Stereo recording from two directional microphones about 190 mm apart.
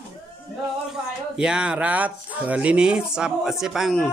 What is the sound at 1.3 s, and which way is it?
Speech, 5° right (ahead or behind).